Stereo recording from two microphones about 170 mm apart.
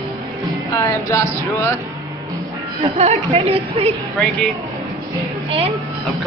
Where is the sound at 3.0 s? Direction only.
40° right (ahead or behind).